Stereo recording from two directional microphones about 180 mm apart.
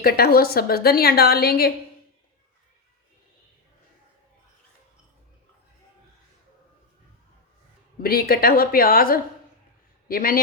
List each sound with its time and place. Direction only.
0.0 s a woman's voice: 55° left (ahead or behind)
8.0 s a woman's voice: 55° left (ahead or behind)